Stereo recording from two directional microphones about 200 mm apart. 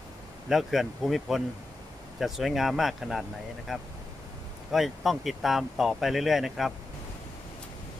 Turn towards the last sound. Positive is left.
turn(degrees=0)  # may be behind; listen again after turning